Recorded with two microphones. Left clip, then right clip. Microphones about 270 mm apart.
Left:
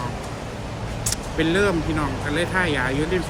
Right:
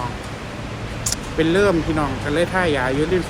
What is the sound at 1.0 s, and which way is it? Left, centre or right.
Speech, centre.